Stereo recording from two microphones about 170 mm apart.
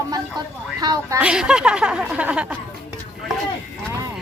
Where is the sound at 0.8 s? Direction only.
25° right (ahead or behind).